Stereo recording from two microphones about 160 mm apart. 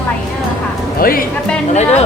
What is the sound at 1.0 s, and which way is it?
Speech, 65° left (ahead or behind).